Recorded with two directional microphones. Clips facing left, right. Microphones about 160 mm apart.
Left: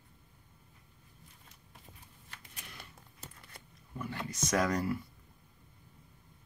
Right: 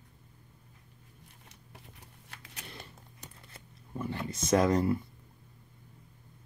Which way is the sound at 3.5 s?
25° right (ahead or behind).